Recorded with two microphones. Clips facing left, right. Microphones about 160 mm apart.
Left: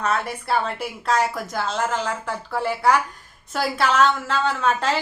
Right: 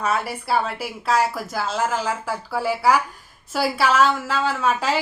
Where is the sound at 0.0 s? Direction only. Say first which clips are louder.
Even; 5° right (ahead or behind).